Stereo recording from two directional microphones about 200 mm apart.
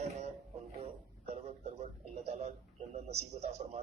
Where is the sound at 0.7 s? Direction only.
30° right (ahead or behind).